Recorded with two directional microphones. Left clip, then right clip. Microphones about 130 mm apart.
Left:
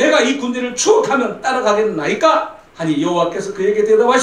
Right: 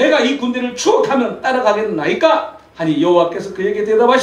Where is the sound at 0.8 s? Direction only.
55° left (ahead or behind).